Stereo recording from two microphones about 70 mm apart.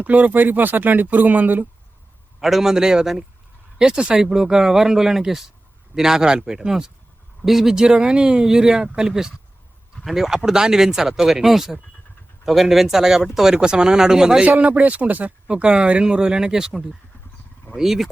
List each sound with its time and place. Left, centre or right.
0.0 s speech: right
2.4 s speech: centre
14.4 s speech: right; by 18.1 s centre